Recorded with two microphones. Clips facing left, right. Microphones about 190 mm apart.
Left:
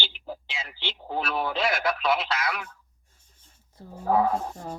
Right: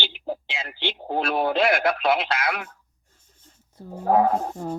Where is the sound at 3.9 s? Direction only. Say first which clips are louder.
Right 4 dB; 50° right (ahead or behind).